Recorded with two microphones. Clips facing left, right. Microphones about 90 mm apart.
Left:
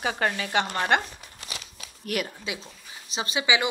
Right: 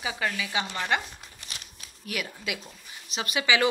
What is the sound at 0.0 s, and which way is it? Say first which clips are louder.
Speech: left 4 dB; 50° left (ahead or behind).